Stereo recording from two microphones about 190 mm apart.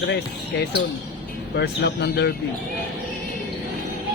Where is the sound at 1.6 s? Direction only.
65° left (ahead or behind).